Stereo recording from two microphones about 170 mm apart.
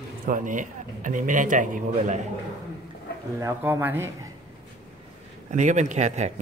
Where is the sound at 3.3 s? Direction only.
15° right (ahead or behind).